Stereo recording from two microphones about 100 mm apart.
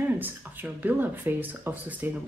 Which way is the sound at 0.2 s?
20° right (ahead or behind).